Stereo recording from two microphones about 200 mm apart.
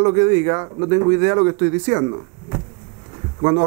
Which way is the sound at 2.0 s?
25° right (ahead or behind).